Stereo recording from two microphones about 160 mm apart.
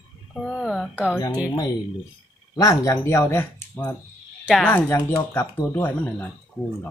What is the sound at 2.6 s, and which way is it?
Speech, 20° left (ahead or behind).